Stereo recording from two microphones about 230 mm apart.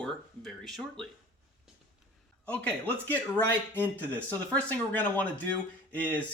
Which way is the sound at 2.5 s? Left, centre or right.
Centre.